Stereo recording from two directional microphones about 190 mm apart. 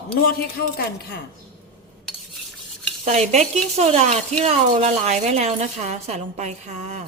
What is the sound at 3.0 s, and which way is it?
Speech, 35° right (ahead or behind).